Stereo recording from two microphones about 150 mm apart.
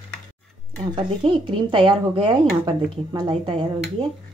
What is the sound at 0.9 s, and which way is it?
Speech, 35° right (ahead or behind).